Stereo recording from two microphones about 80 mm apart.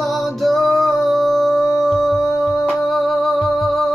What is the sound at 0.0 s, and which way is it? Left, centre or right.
Music, centre.